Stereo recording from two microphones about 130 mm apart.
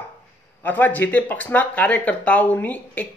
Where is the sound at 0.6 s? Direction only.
15° left (ahead or behind).